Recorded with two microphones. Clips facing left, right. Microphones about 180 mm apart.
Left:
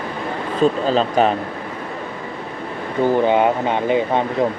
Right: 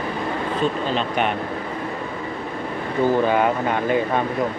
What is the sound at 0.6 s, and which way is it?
Speech, 35° left (ahead or behind).